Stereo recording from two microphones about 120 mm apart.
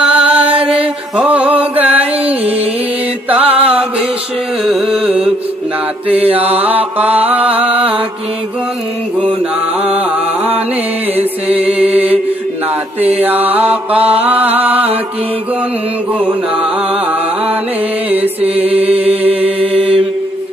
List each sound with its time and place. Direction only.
0.0 s mantra: 10° right (ahead or behind)
0.6 s mantra: 50° right (ahead or behind)
1.1 s mantra: 10° right (ahead or behind)
3.3 s music: 10° right (ahead or behind)
6.1 s mantra: 55° right (ahead or behind)
6.5 s mantra: 15° right (ahead or behind)
7.5 s mantra: 50° right (ahead or behind)
11.1 s music: 15° right (ahead or behind)
11.8 s mantra: 15° right (ahead or behind)
13.2 s mantra: 15° right (ahead or behind)
18.1 s music: 15° right (ahead or behind)
18.6 s mantra: 55° right (ahead or behind)